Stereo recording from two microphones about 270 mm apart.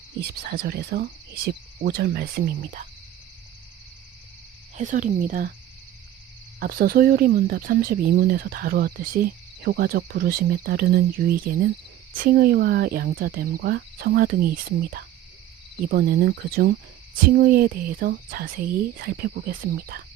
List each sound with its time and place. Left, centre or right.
0.2 s speech: right
4.8 s speech: right
6.6 s speech: right
15.9 s speech: right